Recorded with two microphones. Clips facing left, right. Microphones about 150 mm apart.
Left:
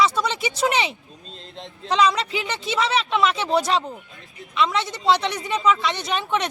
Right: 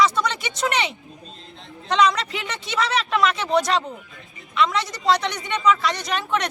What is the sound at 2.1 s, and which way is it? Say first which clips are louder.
Speech: left 2 dB; 5° left (ahead or behind).